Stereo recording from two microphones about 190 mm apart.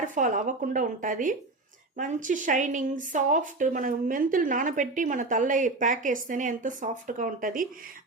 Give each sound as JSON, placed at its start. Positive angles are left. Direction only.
{"t": 0.1, "sound": "a woman's voice", "side_deg": -45}